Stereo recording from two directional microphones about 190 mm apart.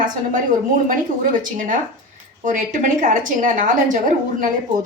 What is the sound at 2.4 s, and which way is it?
A woman's voice, 45° right (ahead or behind).